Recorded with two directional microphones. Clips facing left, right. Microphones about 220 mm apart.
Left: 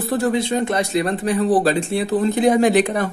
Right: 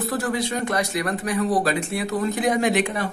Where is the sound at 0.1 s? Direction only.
25° left (ahead or behind).